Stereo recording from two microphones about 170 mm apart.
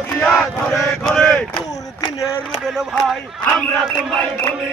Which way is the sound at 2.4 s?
Centre (ahead or behind).